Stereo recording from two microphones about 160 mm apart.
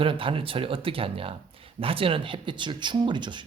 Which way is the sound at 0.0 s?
35° right (ahead or behind).